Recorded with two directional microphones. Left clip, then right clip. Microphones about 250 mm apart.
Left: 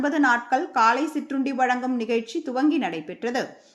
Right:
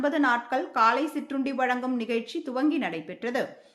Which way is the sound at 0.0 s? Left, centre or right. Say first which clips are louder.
Left 3 dB; centre.